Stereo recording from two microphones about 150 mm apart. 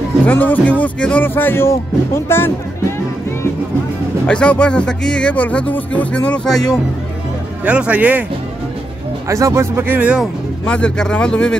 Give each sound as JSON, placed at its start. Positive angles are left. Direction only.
{"t": 0.3, "sound": "speech", "side_deg": 10}
{"t": 4.3, "sound": "speech", "side_deg": 5}
{"t": 7.6, "sound": "speech", "side_deg": -10}
{"t": 9.3, "sound": "speech", "side_deg": -20}
{"t": 10.7, "sound": "speech", "side_deg": 5}